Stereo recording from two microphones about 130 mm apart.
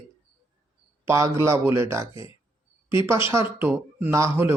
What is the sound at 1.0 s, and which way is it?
Speech, 20° right (ahead or behind).